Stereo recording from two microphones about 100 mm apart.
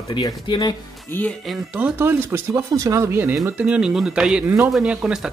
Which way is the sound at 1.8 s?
20° right (ahead or behind).